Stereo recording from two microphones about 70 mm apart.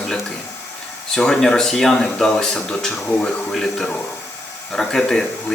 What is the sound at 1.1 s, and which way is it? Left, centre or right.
Speech, centre.